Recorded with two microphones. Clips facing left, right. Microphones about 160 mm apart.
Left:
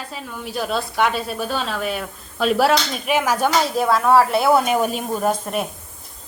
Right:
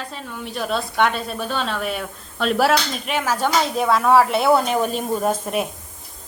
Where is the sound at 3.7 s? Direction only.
Centre (ahead or behind).